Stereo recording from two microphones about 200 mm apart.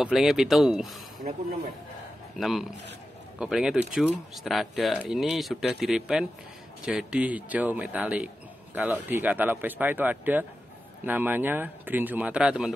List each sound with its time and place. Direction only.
0.0 s speech: centre (ahead or behind)
2.3 s speech: centre (ahead or behind)